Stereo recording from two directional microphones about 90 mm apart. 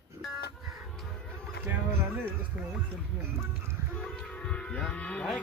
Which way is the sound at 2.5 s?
15° right (ahead or behind).